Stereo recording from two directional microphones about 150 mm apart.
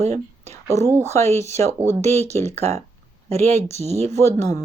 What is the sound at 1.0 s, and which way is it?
Speech, 20° left (ahead or behind).